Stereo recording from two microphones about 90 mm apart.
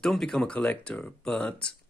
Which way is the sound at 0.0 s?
5° left (ahead or behind).